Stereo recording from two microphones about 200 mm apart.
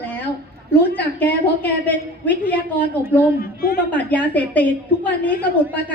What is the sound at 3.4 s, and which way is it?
Speech, 50° left (ahead or behind).